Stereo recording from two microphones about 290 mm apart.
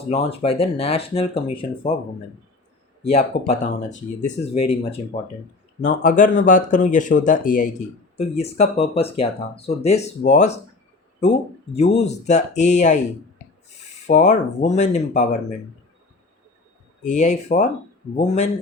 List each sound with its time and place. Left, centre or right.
0.1 s speech: left
3.0 s speech: left
14.1 s speech: left
17.0 s speech: left